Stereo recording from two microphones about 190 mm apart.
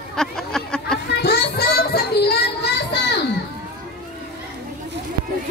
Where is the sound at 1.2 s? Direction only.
60° left (ahead or behind).